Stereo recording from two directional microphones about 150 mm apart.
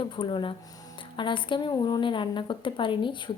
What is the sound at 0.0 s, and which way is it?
Speech, 35° left (ahead or behind).